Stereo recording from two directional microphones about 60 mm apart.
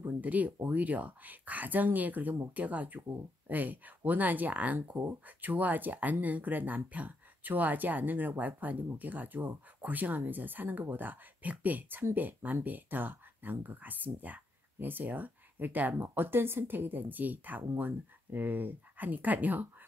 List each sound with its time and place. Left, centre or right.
0.0 s speech: right